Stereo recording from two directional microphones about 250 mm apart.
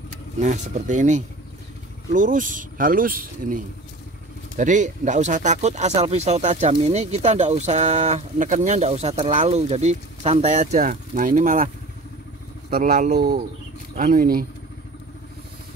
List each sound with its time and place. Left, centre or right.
0.4 s speech: right